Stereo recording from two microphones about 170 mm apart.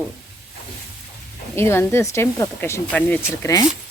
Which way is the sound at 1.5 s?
15° left (ahead or behind).